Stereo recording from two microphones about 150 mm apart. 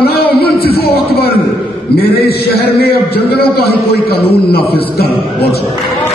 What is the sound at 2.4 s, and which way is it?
A man's voice, 90° left.